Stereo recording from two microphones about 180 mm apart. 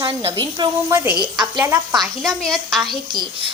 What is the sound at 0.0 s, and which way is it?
Speech, 30° right (ahead or behind).